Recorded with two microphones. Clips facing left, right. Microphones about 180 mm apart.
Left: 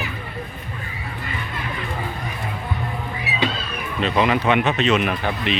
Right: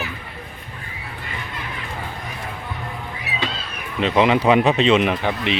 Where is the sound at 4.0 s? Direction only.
20° right (ahead or behind).